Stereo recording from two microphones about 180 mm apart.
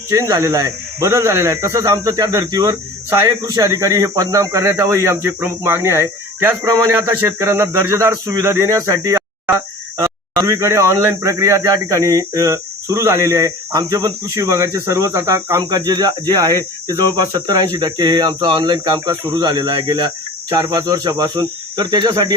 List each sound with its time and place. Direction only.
0.1 s speech: 20° right (ahead or behind)